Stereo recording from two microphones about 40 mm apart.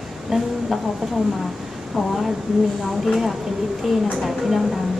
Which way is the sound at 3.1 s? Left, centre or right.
Centre.